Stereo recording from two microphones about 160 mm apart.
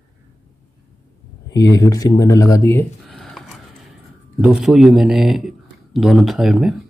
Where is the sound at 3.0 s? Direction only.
5° left (ahead or behind).